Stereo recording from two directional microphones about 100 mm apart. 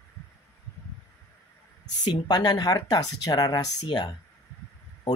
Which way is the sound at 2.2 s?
45° left (ahead or behind).